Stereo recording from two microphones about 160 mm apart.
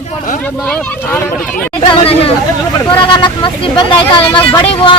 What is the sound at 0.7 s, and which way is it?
Speech, 5° left (ahead or behind).